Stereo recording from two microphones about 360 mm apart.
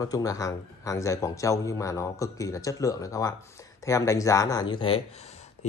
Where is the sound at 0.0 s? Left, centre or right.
Centre.